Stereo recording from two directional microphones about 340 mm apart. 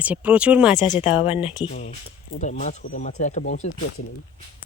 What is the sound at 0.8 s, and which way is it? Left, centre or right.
Speech, centre.